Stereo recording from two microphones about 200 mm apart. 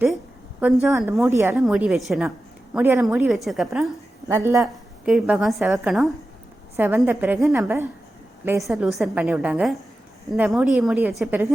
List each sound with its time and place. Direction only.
0.6 s a woman's voice: 10° right (ahead or behind)
0.9 s a woman's voice: centre (ahead or behind)
1.2 s a woman's voice: 10° right (ahead or behind)
4.3 s a woman's voice: 15° right (ahead or behind)
4.6 s a woman's voice: centre (ahead or behind)
8.6 s a woman's voice: centre (ahead or behind)